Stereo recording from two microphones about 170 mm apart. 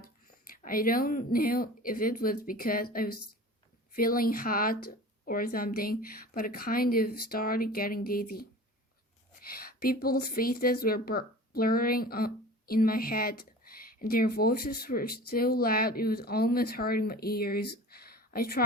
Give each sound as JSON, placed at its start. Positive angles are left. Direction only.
{"t": 0.0, "sound": "a woman's voice", "side_deg": 55}